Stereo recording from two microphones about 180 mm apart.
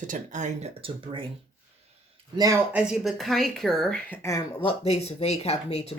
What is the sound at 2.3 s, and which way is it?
Speech, 20° right (ahead or behind).